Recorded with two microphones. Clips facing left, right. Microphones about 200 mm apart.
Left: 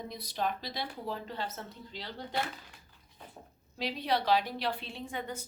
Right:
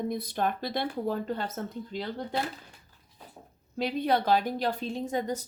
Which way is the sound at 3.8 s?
50° right (ahead or behind).